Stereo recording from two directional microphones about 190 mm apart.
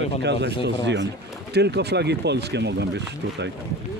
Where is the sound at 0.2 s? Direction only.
65° right (ahead or behind).